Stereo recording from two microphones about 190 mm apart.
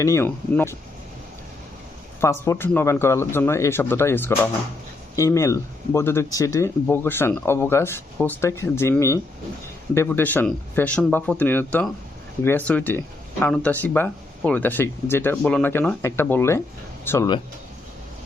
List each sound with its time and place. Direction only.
0.0 s speech: 15° left (ahead or behind)
2.2 s speech: 15° left (ahead or behind)